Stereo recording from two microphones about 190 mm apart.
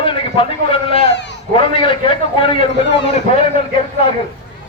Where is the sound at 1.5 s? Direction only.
25° left (ahead or behind).